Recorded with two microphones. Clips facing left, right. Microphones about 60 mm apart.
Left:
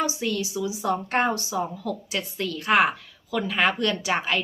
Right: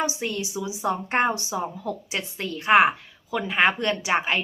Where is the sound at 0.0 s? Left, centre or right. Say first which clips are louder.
Left 1 dB; right.